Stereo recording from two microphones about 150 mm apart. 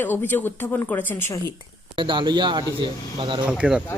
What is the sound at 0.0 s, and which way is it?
Speech, 15° left (ahead or behind).